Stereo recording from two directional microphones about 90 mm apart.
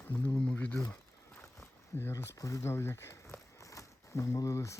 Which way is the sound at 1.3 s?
30° left (ahead or behind).